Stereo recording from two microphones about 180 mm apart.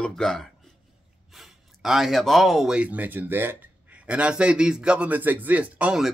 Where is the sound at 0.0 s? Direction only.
5° left (ahead or behind).